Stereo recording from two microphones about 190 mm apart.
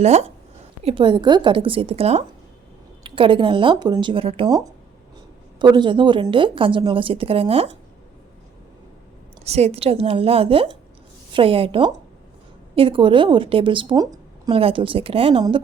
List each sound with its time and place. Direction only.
0.0 s a woman's voice: 35° right (ahead or behind)
9.4 s a woman's voice: 35° right (ahead or behind)